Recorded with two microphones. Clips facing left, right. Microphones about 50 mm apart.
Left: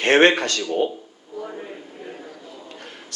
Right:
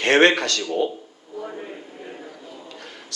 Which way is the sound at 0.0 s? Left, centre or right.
Centre.